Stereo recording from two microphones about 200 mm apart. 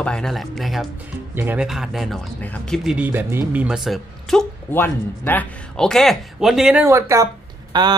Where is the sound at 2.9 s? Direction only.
10° right (ahead or behind).